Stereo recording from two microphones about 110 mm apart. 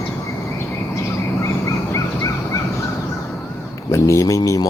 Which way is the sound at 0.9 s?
25° left (ahead or behind).